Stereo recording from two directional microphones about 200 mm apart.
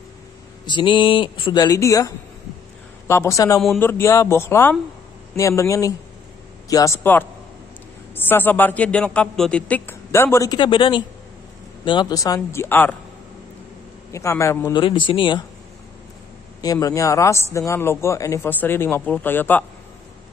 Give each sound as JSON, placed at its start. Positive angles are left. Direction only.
{"t": 0.7, "sound": "a man's voice", "side_deg": 25}
{"t": 14.1, "sound": "a man's voice", "side_deg": 15}
{"t": 14.8, "sound": "speech", "side_deg": 25}
{"t": 16.6, "sound": "a man's voice", "side_deg": 15}